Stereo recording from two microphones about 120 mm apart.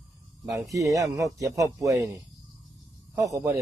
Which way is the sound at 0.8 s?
30° right (ahead or behind).